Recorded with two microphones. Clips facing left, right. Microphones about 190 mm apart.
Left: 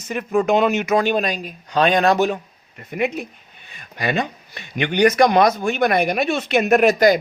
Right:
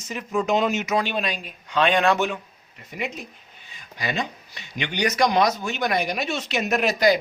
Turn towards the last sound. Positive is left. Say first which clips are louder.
# left 6 dB
turn(degrees=50)  # may be behind; listen again after turning